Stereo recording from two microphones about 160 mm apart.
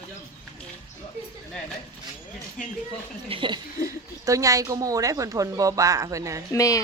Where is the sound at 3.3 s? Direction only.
30° right (ahead or behind).